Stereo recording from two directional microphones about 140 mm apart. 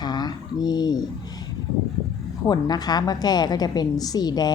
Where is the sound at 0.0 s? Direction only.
30° left (ahead or behind).